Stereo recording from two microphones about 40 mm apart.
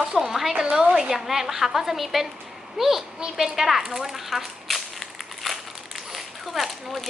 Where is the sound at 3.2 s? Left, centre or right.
Centre.